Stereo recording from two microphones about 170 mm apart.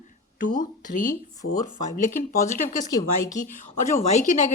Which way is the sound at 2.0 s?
50° left (ahead or behind).